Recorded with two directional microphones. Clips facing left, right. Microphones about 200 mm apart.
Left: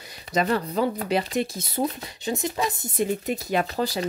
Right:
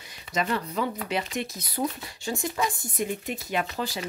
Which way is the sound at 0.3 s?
40° left (ahead or behind).